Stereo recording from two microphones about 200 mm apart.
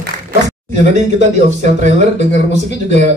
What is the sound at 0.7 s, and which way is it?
A man's voice, 35° right (ahead or behind).